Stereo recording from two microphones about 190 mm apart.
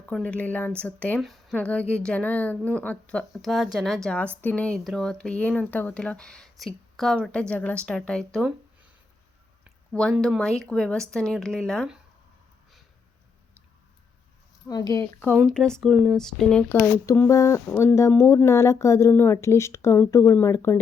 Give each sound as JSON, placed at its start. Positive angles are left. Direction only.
{"t": 0.0, "sound": "speech", "side_deg": 5}
{"t": 10.2, "sound": "speech", "side_deg": 0}
{"t": 14.7, "sound": "speech", "side_deg": 20}
{"t": 15.3, "sound": "speech", "side_deg": 0}